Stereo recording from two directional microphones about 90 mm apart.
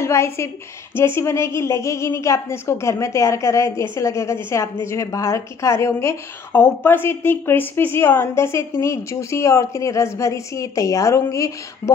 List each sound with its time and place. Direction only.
0.0 s a woman's voice: 30° left (ahead or behind)